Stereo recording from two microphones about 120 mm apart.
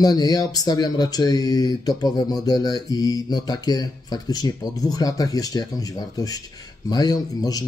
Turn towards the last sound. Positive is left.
turn(degrees=30)  # may be behind; listen again after turning